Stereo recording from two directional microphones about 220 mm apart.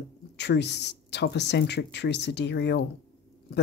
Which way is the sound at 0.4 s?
50° left (ahead or behind).